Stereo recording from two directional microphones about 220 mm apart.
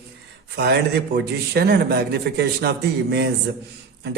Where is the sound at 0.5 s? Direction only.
45° right (ahead or behind).